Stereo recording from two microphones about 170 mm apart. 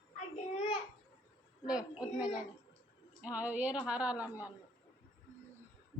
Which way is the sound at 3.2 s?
10° right (ahead or behind).